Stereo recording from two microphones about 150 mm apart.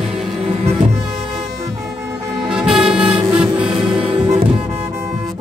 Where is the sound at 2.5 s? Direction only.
5° right (ahead or behind).